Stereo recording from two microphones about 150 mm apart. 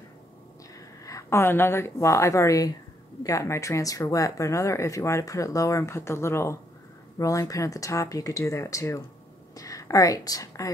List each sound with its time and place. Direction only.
0.7 s a woman's voice: 20° left (ahead or behind)